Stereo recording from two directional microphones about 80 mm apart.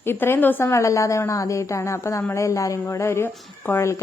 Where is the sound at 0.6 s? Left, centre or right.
Left.